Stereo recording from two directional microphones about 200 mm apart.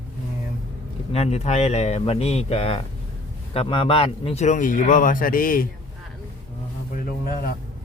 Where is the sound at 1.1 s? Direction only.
30° left (ahead or behind).